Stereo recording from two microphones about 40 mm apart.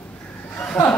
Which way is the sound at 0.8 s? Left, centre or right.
Centre.